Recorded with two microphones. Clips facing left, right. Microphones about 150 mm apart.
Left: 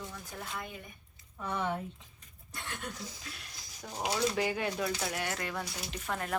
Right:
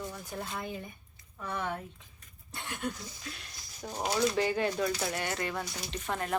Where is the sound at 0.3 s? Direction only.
30° right (ahead or behind).